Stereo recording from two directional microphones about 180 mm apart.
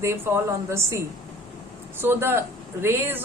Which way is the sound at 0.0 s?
15° right (ahead or behind).